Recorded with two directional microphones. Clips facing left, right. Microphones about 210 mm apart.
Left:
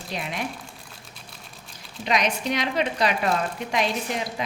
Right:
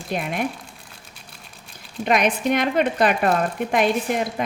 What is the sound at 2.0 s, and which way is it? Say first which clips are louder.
Speech: right 5 dB; 55° right (ahead or behind).